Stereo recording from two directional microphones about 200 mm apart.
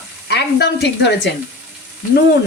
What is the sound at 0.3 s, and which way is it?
Speech, 55° left (ahead or behind).